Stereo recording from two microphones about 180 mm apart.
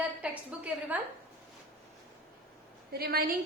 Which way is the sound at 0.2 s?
10° right (ahead or behind).